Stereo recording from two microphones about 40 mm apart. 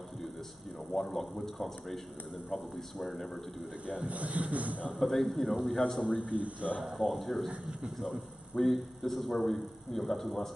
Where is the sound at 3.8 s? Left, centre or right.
Right.